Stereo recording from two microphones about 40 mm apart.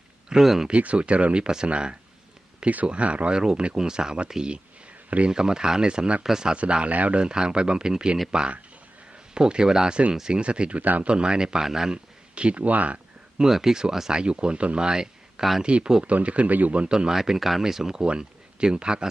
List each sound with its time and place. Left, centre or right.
0.3 s speech: centre
0.7 s speech: right; by 6.6 s centre
6.6 s speech: right
7.2 s speech: centre
9.9 s speech: right
10.8 s speech: right
11.1 s speech: right
12.3 s speech: right
13.5 s speech: centre
14.1 s speech: right
14.8 s speech: centre; by 16.9 s right
16.9 s speech: centre
17.2 s speech: centre; by 19.0 s right